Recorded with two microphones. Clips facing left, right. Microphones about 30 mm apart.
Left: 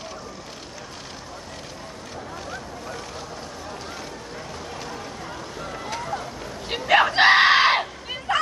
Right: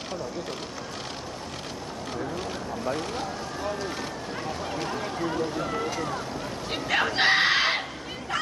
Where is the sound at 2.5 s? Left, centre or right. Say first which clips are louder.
Right 4 dB; right.